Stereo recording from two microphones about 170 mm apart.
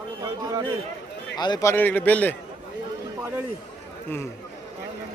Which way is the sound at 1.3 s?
25° left (ahead or behind).